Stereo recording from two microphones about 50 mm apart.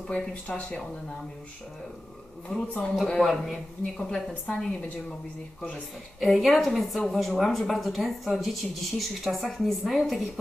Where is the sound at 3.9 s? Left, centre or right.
Centre.